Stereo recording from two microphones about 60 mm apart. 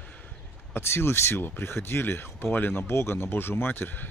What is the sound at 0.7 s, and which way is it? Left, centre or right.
Speech, left.